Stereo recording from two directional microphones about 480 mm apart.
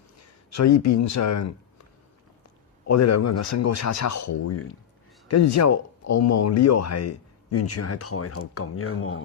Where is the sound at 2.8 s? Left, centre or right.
Left.